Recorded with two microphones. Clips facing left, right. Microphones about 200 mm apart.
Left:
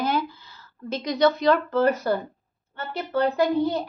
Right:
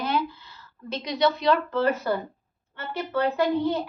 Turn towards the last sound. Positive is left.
turn(degrees=40)  # may be behind; listen again after turning